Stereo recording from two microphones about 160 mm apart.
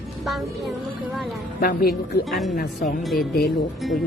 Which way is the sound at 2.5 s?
60° left (ahead or behind).